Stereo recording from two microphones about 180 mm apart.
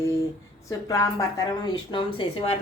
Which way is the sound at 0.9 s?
20° left (ahead or behind).